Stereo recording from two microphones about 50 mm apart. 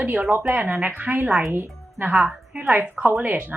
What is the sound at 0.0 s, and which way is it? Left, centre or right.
A woman's voice, right.